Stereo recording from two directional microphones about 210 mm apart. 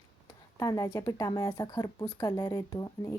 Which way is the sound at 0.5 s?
15° left (ahead or behind).